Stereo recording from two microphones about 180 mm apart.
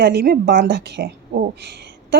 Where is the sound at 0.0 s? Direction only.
60° right (ahead or behind).